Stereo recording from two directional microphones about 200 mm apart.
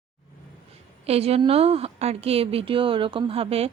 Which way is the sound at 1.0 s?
30° right (ahead or behind).